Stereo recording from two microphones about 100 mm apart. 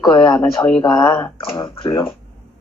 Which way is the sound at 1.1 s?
25° left (ahead or behind).